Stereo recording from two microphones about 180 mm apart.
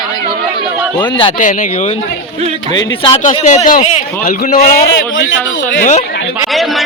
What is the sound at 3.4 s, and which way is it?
A man's voice, 40° left (ahead or behind).